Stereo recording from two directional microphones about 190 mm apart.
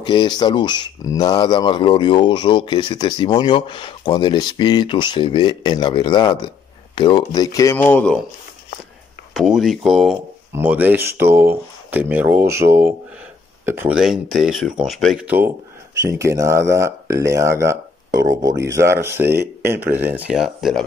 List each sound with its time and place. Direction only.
0.0 s speech: 20° left (ahead or behind)
9.3 s speech: centre (ahead or behind)